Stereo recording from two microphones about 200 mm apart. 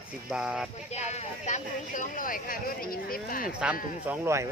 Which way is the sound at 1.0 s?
35° left (ahead or behind).